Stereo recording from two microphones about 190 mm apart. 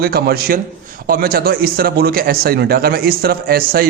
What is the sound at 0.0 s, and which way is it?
A man's voice, 55° right (ahead or behind).